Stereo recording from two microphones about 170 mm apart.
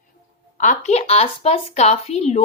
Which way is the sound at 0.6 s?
45° left (ahead or behind).